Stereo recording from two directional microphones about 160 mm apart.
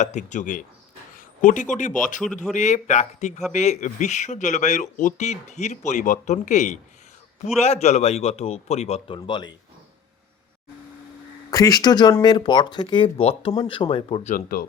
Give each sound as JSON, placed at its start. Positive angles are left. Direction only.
{"t": 0.0, "sound": "speech", "side_deg": 50}
{"t": 1.1, "sound": "a sound", "side_deg": 55}
{"t": 1.7, "sound": "a man's voice", "side_deg": 50}
{"t": 11.5, "sound": "a man's voice", "side_deg": 25}
{"t": 14.3, "sound": "speech", "side_deg": 60}